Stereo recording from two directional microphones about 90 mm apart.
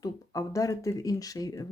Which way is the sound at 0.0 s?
40° left (ahead or behind).